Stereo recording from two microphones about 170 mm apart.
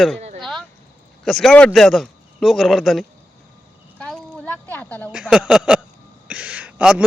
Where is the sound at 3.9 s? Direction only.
5° left (ahead or behind).